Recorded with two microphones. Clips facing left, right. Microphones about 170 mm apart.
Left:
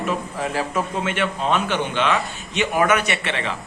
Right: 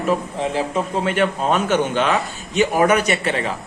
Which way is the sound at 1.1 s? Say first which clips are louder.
Right 5 dB; 40° right (ahead or behind).